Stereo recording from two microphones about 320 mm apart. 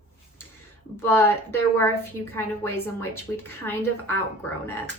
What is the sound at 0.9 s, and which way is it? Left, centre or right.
Speech, centre.